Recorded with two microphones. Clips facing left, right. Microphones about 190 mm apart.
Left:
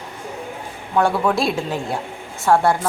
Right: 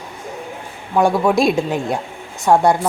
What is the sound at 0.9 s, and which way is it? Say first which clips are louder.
A man's voice: right 3 dB; 15° right (ahead or behind).